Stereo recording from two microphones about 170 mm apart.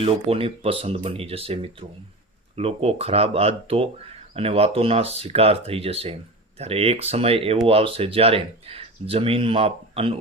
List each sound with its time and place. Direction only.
0.0 s speech: 35° right (ahead or behind)